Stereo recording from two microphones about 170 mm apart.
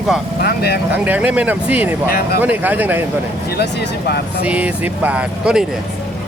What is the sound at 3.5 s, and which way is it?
Speech, 70° left (ahead or behind).